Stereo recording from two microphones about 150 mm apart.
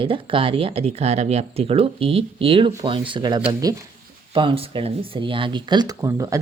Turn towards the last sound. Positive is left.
turn(degrees=-20)  # may be behind; listen again after turning